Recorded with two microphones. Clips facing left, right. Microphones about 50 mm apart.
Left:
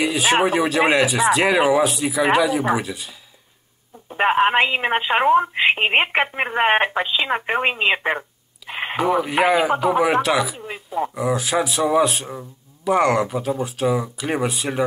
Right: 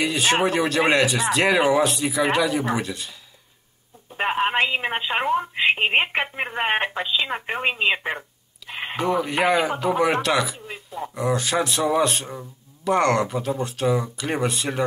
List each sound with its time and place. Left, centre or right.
0.0 s speech: centre
4.1 s speech: left
8.9 s speech: centre